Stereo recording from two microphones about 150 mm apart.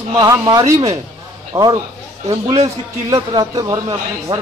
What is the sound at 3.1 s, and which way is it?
Speech, 25° right (ahead or behind).